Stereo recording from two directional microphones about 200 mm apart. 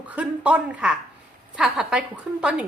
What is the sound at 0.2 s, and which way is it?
A woman's voice, 5° right (ahead or behind).